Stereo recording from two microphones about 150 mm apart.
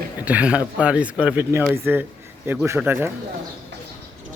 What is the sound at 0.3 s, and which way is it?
Speech, 10° right (ahead or behind).